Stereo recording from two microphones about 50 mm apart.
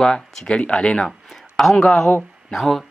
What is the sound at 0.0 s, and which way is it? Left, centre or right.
Speech, centre.